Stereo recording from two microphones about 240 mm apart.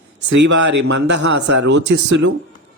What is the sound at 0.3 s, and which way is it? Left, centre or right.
Speech, right.